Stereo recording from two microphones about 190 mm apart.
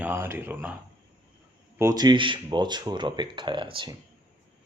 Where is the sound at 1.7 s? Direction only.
20° right (ahead or behind).